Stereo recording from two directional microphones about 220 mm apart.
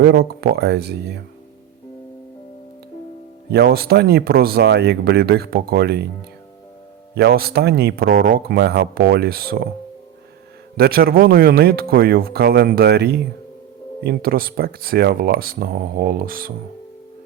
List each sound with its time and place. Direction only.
0.0 s speech: 45° right (ahead or behind)
3.5 s speech: 45° right (ahead or behind)
7.2 s speech: 45° right (ahead or behind)
10.8 s speech: 45° right (ahead or behind)